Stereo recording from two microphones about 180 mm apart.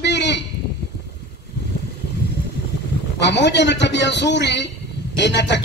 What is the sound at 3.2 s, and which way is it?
A man's voice, 75° left (ahead or behind).